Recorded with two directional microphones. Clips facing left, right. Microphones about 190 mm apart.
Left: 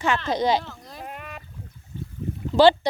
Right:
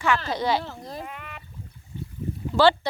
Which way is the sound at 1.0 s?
45° left (ahead or behind).